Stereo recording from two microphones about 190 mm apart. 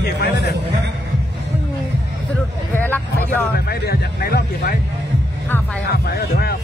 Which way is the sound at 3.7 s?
55° left (ahead or behind).